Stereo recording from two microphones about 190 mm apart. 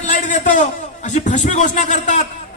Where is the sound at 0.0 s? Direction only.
40° left (ahead or behind).